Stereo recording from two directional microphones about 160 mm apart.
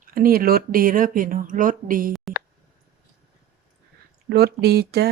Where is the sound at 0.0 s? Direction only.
65° right (ahead or behind).